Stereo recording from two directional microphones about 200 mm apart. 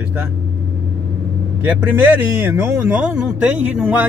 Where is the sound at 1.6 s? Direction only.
10° right (ahead or behind).